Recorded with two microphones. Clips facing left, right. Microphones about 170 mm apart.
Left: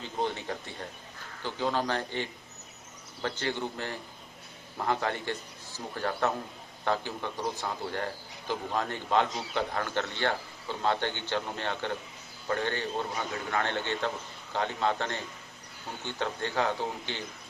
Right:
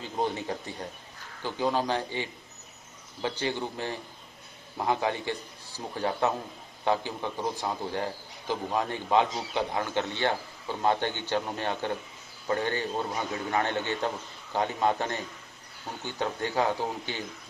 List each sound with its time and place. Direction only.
0.2 s a man's voice: 20° right (ahead or behind)
16.2 s a man's voice: 15° right (ahead or behind)